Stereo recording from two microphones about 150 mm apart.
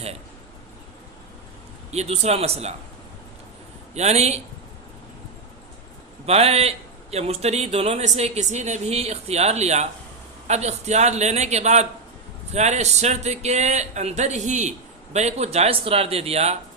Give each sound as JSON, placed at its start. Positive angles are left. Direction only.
{"t": 1.9, "sound": "a man's voice", "side_deg": -45}
{"t": 3.9, "sound": "a man's voice", "side_deg": -45}
{"t": 6.2, "sound": "a man's voice", "side_deg": -45}